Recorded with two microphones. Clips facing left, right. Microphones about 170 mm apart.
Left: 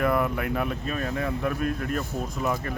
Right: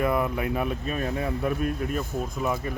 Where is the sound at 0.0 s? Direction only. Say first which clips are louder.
Even; 20° right (ahead or behind).